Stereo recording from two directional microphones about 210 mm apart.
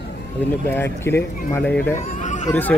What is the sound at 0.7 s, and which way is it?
Speech, 10° left (ahead or behind).